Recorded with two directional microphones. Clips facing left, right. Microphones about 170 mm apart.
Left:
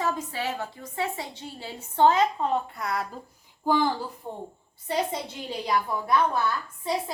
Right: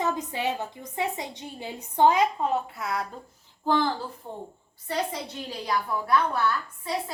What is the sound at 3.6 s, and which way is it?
A woman's voice, 10° left (ahead or behind).